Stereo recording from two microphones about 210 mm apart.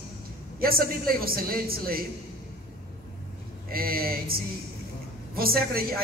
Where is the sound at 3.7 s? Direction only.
45° right (ahead or behind).